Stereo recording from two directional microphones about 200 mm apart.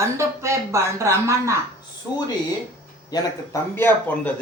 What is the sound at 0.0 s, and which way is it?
Speech, 15° right (ahead or behind).